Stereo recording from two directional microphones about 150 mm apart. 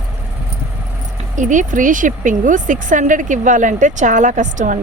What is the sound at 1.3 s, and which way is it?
Speech, 55° right (ahead or behind).